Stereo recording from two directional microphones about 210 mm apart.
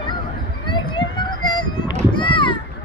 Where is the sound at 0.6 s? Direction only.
20° left (ahead or behind).